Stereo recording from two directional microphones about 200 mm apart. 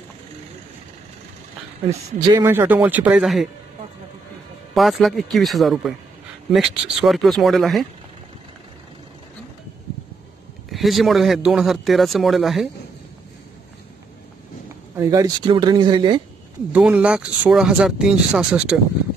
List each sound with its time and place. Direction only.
2.1 s speech: 15° right (ahead or behind)
4.7 s speech: centre (ahead or behind)
10.7 s speech: centre (ahead or behind)
15.0 s speech: 15° right (ahead or behind)
16.7 s speech: 5° right (ahead or behind)